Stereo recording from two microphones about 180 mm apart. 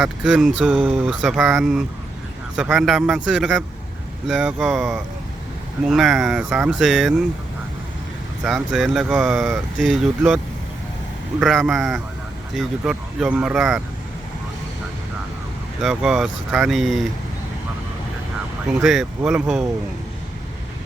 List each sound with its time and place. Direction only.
0.0 s speech: 5° right (ahead or behind)
8.4 s speech: centre (ahead or behind)
15.8 s speech: centre (ahead or behind)
18.7 s speech: centre (ahead or behind)